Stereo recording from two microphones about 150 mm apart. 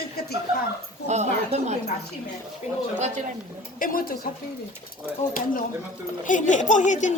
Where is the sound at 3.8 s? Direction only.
70° left (ahead or behind).